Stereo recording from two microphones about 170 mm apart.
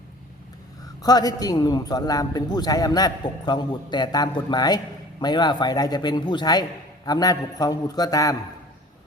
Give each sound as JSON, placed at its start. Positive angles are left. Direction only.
{"t": 1.0, "sound": "a man's voice", "side_deg": 20}